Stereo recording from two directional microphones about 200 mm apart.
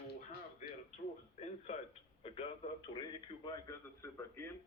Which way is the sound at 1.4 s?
35° left (ahead or behind).